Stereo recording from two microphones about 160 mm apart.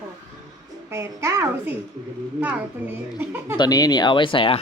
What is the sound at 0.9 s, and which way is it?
A child's voice, 15° right (ahead or behind).